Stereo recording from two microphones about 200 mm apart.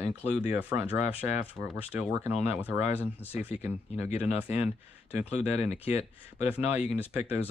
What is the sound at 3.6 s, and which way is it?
Speech, 10° right (ahead or behind).